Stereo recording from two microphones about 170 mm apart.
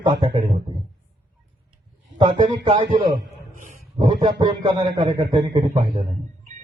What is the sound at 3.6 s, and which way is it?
Wild animals, 45° right (ahead or behind).